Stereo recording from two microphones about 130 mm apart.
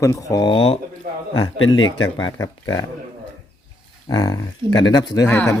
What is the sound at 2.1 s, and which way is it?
Speech, 30° left (ahead or behind).